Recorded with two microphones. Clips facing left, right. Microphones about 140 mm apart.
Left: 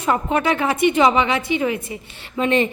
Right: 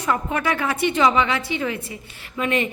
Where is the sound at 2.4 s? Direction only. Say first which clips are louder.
Left 4 dB; 30° left (ahead or behind).